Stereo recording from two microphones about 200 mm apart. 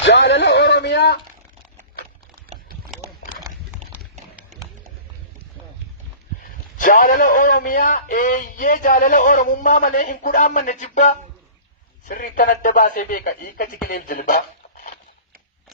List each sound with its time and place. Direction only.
0.0 s a sound: 60° left (ahead or behind)
6.7 s a man's voice: 40° left (ahead or behind)
13.8 s music: 45° left (ahead or behind)